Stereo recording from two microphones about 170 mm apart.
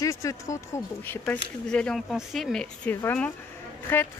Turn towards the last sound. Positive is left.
turn(degrees=15)  # may be behind; listen again after turning